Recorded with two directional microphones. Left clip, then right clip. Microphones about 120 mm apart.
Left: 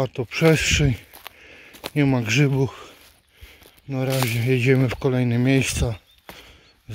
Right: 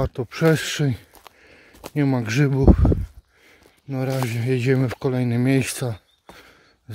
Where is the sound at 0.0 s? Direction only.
30° right (ahead or behind); by 1.0 s 15° right (ahead or behind).